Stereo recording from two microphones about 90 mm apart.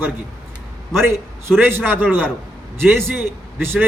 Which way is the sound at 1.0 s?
30° right (ahead or behind).